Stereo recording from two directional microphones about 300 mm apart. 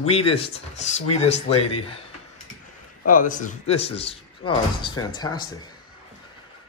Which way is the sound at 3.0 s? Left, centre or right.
Left.